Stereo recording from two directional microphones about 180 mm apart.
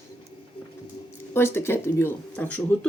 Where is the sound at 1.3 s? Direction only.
15° left (ahead or behind).